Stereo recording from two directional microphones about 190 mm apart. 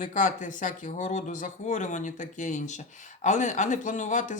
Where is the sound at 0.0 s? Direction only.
45° left (ahead or behind).